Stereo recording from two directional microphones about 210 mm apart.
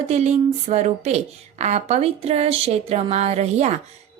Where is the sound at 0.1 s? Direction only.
30° right (ahead or behind).